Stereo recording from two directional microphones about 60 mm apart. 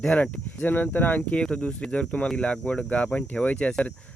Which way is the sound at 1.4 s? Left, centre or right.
Centre.